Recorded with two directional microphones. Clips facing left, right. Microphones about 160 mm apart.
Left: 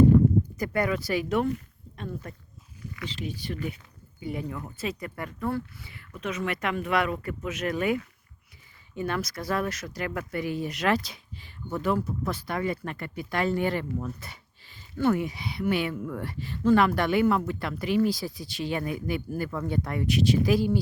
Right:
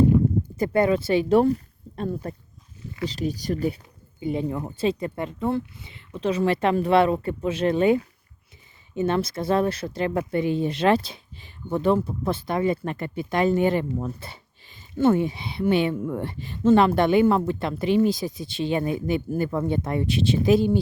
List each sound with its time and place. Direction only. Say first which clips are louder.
0.4 s speech: right 7 dB; 25° right (ahead or behind)
4.2 s speech: right 7 dB; 25° right (ahead or behind)